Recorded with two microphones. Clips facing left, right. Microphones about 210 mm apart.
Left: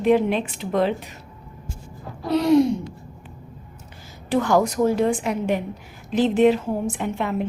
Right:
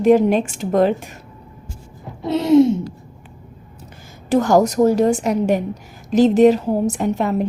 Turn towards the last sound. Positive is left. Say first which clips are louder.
# right 6 dB
turn(degrees=-40)  # may be behind; listen again after turning